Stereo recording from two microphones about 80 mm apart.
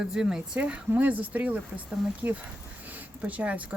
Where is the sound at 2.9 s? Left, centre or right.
Centre.